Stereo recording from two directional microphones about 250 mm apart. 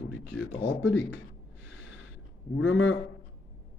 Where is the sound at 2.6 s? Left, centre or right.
Left.